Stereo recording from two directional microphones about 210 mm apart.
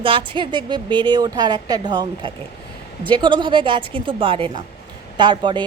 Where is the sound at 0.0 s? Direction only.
25° right (ahead or behind).